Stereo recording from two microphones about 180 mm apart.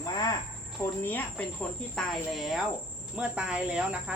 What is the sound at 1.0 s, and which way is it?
Speech, 10° left (ahead or behind).